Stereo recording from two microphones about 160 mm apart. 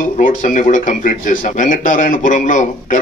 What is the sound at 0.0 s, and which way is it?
A man's voice, 55° left (ahead or behind).